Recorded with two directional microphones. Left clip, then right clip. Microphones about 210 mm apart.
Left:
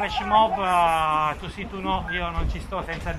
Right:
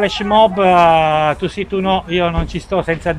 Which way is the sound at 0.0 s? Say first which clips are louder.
Right 8 dB; 50° right (ahead or behind).